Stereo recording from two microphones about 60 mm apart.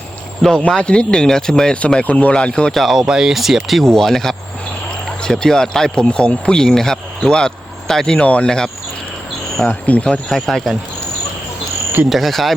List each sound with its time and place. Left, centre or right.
0.8 s speech: centre
2.7 s speech: centre
9.6 s speech: left
10.3 s speech: centre
12.0 s speech: centre